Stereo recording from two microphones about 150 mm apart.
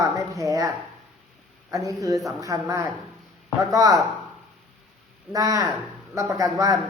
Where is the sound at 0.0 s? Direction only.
20° right (ahead or behind).